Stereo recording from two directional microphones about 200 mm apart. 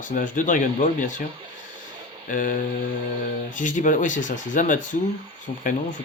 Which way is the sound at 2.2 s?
40° left (ahead or behind).